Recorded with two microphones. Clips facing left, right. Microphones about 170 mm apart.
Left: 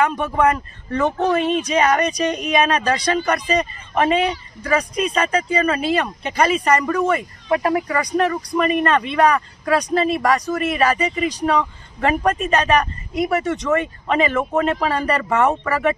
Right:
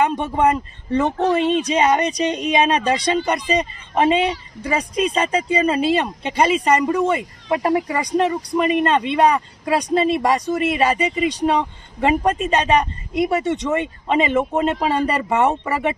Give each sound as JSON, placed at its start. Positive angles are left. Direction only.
{"t": 0.0, "sound": "speech", "side_deg": -20}